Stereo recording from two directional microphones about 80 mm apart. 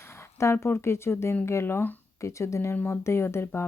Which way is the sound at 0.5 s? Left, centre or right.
Left.